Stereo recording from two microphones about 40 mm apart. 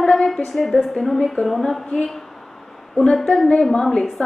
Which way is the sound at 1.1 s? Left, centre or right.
Centre.